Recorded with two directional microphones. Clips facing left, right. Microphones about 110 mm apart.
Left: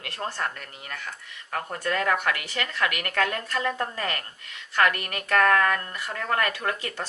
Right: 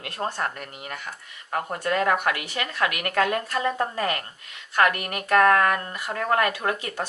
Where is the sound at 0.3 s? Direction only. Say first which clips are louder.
Right 1 dB; 15° right (ahead or behind).